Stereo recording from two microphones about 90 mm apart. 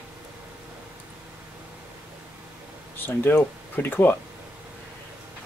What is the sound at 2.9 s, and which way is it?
Speech, 25° left (ahead or behind).